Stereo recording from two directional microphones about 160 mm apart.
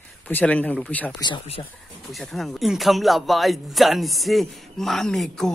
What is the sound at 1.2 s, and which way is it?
Speech, 30° left (ahead or behind).